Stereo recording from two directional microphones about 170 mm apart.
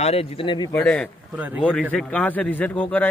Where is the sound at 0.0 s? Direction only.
35° left (ahead or behind).